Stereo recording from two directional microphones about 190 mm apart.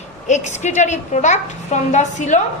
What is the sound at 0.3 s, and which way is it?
A woman's voice, 40° left (ahead or behind).